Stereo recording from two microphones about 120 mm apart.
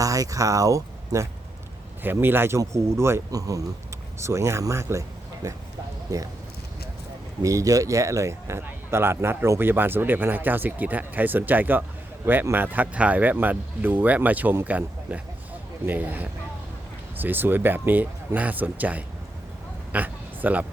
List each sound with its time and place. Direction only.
0.0 s speech: 30° right (ahead or behind)
7.4 s speech: 30° right (ahead or behind); by 19.0 s 15° right (ahead or behind)
19.9 s oink: 15° right (ahead or behind)